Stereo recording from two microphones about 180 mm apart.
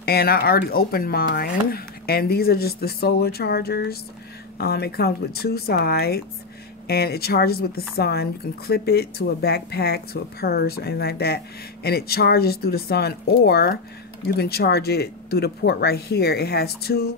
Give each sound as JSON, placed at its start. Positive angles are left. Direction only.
{"t": 0.0, "sound": "speech", "side_deg": 60}